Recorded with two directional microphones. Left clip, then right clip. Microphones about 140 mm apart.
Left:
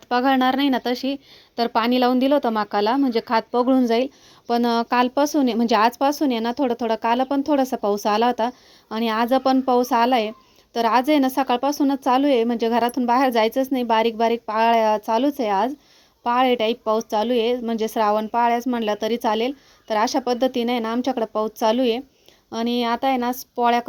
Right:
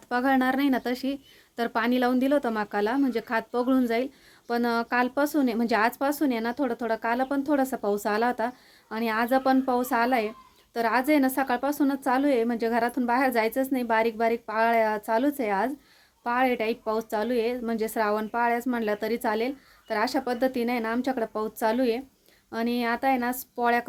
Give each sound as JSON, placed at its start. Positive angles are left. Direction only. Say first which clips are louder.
{"t": 0.1, "sound": "a woman's voice", "louder": "left 6 dB", "side_deg": 25}